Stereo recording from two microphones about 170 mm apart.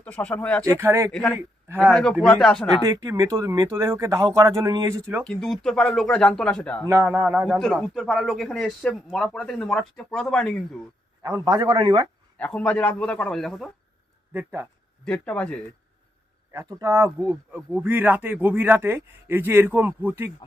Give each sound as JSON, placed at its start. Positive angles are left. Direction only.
{"t": 0.0, "sound": "a man's voice", "side_deg": 10}
{"t": 0.8, "sound": "speech", "side_deg": -15}
{"t": 1.8, "sound": "a man's voice", "side_deg": 5}
{"t": 2.8, "sound": "speech", "side_deg": -20}
{"t": 5.2, "sound": "a man's voice", "side_deg": 5}
{"t": 6.8, "sound": "a man's voice", "side_deg": -15}
{"t": 11.2, "sound": "speech", "side_deg": -20}
{"t": 12.4, "sound": "a man's voice", "side_deg": 5}
{"t": 14.3, "sound": "speech", "side_deg": -15}
{"t": 15.0, "sound": "a man's voice", "side_deg": 10}
{"t": 16.5, "sound": "speech", "side_deg": -20}